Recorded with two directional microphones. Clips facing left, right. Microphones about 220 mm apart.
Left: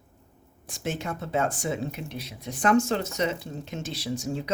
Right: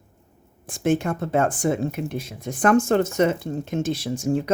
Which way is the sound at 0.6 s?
50° right (ahead or behind).